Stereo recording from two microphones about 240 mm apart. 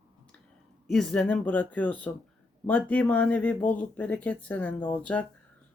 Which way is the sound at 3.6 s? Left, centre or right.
Left.